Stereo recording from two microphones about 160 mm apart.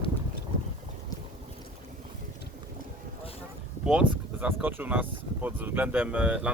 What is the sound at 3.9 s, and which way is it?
Speech, 10° right (ahead or behind).